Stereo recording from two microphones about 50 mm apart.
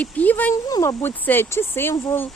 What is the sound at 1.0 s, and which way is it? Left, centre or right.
Speech, left.